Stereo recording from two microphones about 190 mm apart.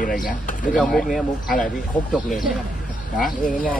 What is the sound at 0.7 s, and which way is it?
Speech, centre (ahead or behind).